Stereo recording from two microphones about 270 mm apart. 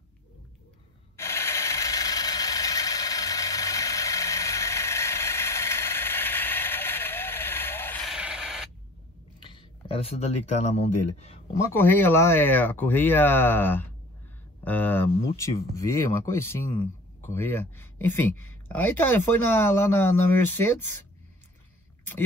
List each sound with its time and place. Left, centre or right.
1.1 s vehicle: centre
9.4 s speech: centre
11.6 s speech: centre